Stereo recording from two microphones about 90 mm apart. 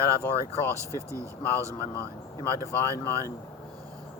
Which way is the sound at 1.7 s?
30° left (ahead or behind).